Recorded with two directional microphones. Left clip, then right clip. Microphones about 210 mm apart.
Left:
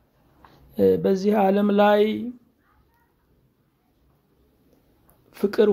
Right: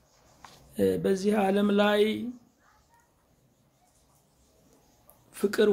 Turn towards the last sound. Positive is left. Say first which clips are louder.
# left 5 dB
turn(degrees=20)  # may be behind; listen again after turning